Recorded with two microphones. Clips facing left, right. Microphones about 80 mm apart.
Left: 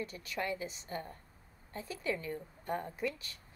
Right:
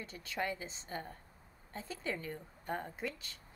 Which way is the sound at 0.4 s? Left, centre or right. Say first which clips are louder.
Left 1 dB; right.